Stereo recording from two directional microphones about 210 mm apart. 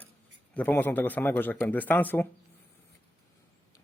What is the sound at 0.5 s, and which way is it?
A man's voice, 10° left (ahead or behind).